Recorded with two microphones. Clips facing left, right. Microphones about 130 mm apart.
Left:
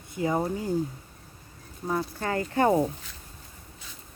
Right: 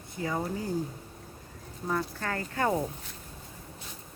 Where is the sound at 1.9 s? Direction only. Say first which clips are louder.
Left 3 dB; 20° left (ahead or behind).